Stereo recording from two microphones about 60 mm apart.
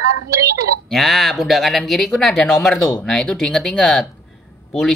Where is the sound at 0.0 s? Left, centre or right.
Right.